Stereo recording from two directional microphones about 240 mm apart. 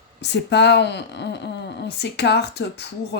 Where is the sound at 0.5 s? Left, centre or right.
Left.